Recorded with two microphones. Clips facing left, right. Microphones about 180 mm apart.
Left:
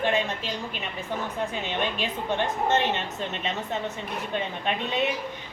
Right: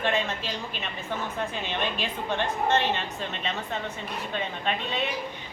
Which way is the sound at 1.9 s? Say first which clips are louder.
Left 2 dB; 20° left (ahead or behind).